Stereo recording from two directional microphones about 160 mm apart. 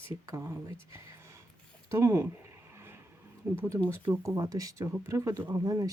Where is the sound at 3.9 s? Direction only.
15° right (ahead or behind).